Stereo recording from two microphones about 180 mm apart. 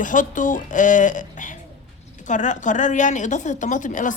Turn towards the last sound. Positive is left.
turn(degrees=45)  # may be behind; listen again after turning